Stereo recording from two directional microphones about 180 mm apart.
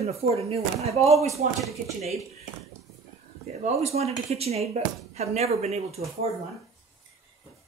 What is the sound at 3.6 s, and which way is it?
Speech, 35° right (ahead or behind).